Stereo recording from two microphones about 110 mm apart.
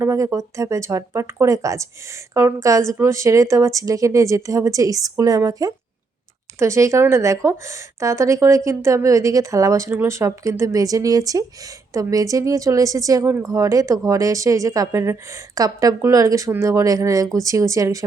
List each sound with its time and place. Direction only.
0.0 s speech: 30° right (ahead or behind)